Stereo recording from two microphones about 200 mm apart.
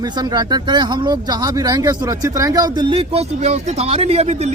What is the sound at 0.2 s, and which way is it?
Speech, 20° right (ahead or behind).